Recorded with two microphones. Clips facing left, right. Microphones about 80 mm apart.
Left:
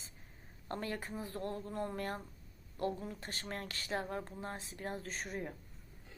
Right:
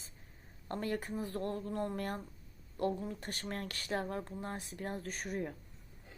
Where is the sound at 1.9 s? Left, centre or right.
Left.